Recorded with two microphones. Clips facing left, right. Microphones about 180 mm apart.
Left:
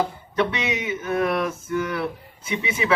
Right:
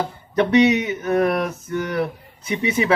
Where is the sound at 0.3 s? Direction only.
40° right (ahead or behind).